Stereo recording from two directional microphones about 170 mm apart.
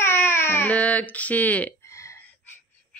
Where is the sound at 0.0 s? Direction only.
15° left (ahead or behind).